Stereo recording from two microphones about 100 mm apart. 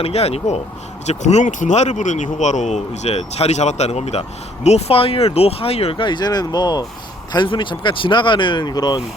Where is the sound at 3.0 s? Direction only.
90° left.